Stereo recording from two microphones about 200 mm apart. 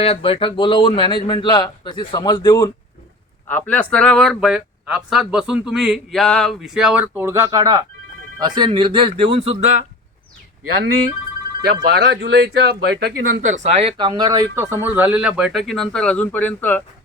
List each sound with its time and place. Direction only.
0.0 s speech: 30° left (ahead or behind); by 9.6 s 30° right (ahead or behind)
11.6 s speech: 55° right (ahead or behind)
13.5 s speech: 35° right (ahead or behind); by 16.8 s 10° left (ahead or behind)